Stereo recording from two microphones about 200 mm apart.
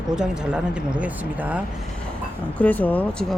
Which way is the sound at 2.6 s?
10° left (ahead or behind).